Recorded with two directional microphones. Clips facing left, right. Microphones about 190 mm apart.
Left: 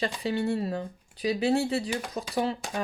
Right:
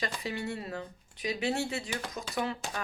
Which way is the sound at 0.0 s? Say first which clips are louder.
Left 7 dB; 30° left (ahead or behind).